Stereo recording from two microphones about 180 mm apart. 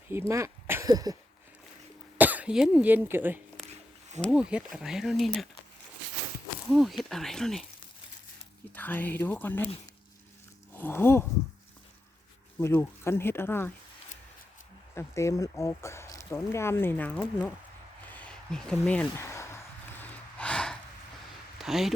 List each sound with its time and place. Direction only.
0.1 s speech: 15° right (ahead or behind)
2.1 s speech: 10° right (ahead or behind)
6.7 s speech: centre (ahead or behind)
8.7 s speech: 10° left (ahead or behind)
10.8 s speech: 10° left (ahead or behind)
12.5 s speech: 15° left (ahead or behind)
14.9 s speech: 15° left (ahead or behind)
18.1 s a sound: 5° left (ahead or behind)